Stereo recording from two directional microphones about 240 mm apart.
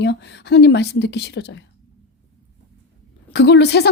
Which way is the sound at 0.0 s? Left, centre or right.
Left.